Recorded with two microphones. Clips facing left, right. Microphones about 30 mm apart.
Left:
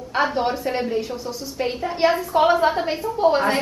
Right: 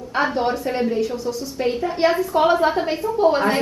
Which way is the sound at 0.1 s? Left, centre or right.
Centre.